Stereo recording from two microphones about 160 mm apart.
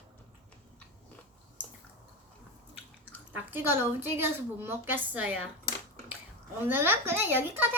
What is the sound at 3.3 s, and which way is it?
A woman's voice, 10° right (ahead or behind).